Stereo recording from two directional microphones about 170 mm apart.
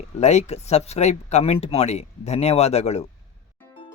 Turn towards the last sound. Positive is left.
turn(degrees=40)  # may be behind; listen again after turning